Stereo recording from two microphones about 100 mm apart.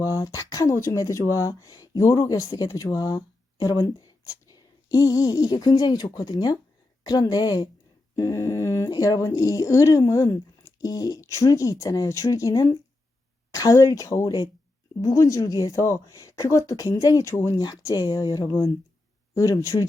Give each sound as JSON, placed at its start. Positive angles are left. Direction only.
{"t": 0.0, "sound": "speech", "side_deg": 30}
{"t": 8.1, "sound": "speech", "side_deg": 35}